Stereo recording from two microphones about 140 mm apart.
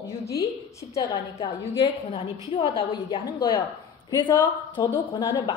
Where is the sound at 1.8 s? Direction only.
45° left (ahead or behind).